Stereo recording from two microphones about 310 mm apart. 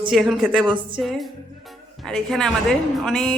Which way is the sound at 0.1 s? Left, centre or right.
Centre.